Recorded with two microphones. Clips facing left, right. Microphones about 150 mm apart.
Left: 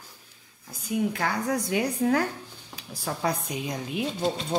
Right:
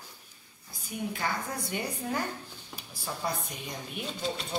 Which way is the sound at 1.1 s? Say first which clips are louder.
Left 6 dB; 85° left.